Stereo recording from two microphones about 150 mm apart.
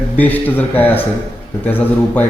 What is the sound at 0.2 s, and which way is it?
Speech, 10° left (ahead or behind).